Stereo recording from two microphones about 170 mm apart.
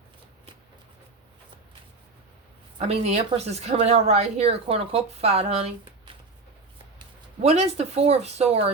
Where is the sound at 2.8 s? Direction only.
40° right (ahead or behind).